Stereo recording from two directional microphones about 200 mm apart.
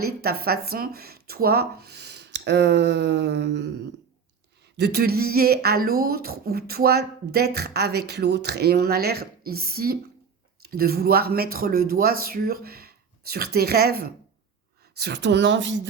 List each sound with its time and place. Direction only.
0.0 s speech: 50° right (ahead or behind)
4.8 s speech: 55° right (ahead or behind)